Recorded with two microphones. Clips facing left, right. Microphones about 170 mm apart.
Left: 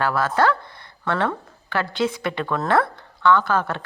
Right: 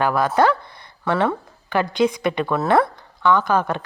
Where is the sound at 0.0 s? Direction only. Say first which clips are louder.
Right 3 dB; 15° right (ahead or behind).